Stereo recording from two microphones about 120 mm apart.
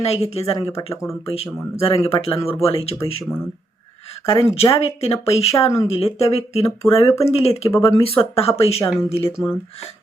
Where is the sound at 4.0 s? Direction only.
55° left (ahead or behind).